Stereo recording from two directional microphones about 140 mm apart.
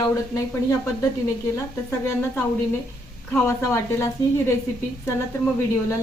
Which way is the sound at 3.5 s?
20° left (ahead or behind).